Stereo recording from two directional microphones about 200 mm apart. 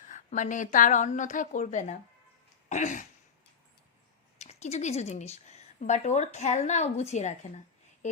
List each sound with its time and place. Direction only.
0.1 s a woman's voice: 40° left (ahead or behind)
2.6 s throat clearing: 35° left (ahead or behind)
4.4 s a woman's voice: 35° left (ahead or behind)